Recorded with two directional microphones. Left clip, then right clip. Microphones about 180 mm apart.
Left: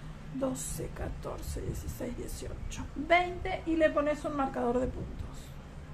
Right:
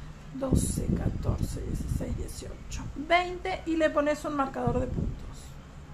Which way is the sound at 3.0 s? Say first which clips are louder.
Right 1 dB; 15° right (ahead or behind).